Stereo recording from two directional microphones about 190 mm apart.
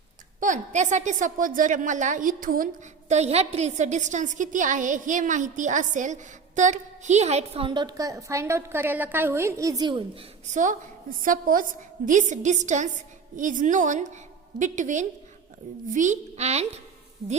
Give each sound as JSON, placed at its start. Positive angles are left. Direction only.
{"t": 0.3, "sound": "a woman's voice", "side_deg": -40}
{"t": 3.1, "sound": "a woman's voice", "side_deg": -35}
{"t": 10.4, "sound": "a woman's voice", "side_deg": -40}